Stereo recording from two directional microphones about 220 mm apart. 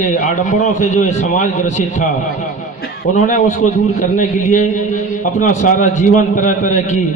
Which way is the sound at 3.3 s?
35° left (ahead or behind).